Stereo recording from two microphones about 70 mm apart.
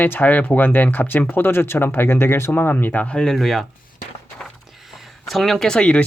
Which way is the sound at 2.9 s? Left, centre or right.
Centre.